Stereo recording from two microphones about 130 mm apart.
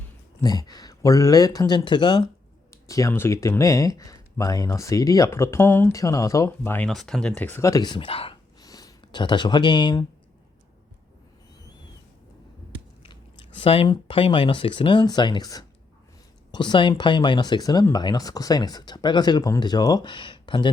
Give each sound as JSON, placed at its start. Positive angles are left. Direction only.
{"t": 0.4, "sound": "speech", "side_deg": 30}
{"t": 2.6, "sound": "speech", "side_deg": 25}
{"t": 6.7, "sound": "speech", "side_deg": 5}
{"t": 8.6, "sound": "speech", "side_deg": 30}
{"t": 13.0, "sound": "biting", "side_deg": 45}
{"t": 13.6, "sound": "speech", "side_deg": 50}